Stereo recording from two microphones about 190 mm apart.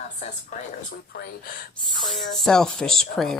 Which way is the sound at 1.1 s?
50° left (ahead or behind).